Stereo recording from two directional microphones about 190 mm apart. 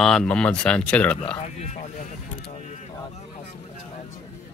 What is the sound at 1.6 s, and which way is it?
Speech, 35° left (ahead or behind).